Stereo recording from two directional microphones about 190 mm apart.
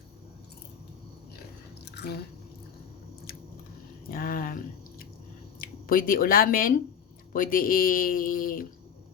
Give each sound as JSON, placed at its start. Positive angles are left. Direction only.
{"t": 1.8, "sound": "drip", "side_deg": 60}
{"t": 4.1, "sound": "drip", "side_deg": 50}
{"t": 5.5, "sound": "speech", "side_deg": 50}